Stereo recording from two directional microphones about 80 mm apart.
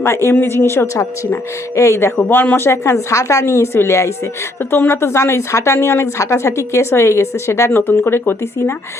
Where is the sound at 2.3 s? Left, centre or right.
Left.